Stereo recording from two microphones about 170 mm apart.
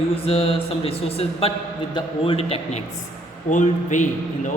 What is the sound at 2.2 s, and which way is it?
Speech, 35° left (ahead or behind).